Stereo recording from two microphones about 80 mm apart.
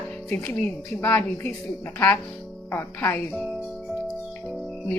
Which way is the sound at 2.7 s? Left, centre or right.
Left.